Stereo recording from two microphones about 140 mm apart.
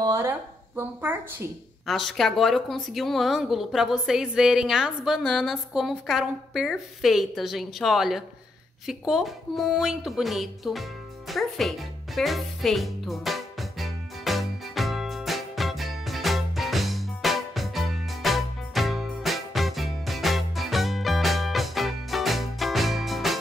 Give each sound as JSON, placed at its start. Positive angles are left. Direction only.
{"t": 0.0, "sound": "speech", "side_deg": -20}
{"t": 1.9, "sound": "speech", "side_deg": 0}
{"t": 8.8, "sound": "music", "side_deg": -5}